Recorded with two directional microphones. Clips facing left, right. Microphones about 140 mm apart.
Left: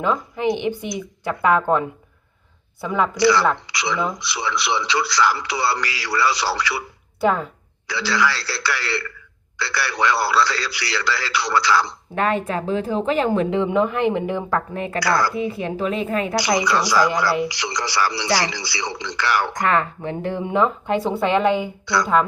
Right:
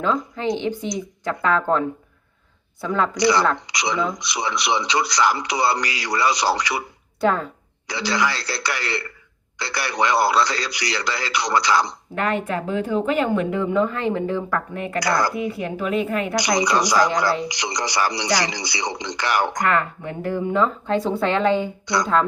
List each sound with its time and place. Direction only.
0.0 s speech: 10° left (ahead or behind)
2.8 s speech: 10° left (ahead or behind)
3.2 s a man's voice: 20° right (ahead or behind)
7.2 s speech: 5° left (ahead or behind)
7.9 s a man's voice: 20° right (ahead or behind)
12.2 s a woman's voice: 25° left (ahead or behind)
14.9 s a man's voice: 20° right (ahead or behind)
15.4 s a woman's voice: 30° left (ahead or behind)
16.6 s a man's voice: 15° right (ahead or behind)
19.7 s speech: 25° left (ahead or behind); by 22.3 s 10° left (ahead or behind)